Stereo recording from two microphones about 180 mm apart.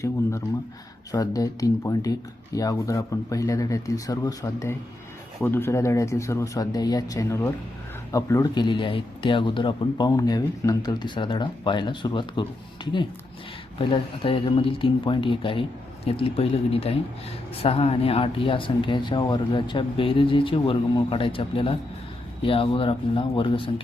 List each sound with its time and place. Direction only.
0.0 s a man's voice: 15° left (ahead or behind)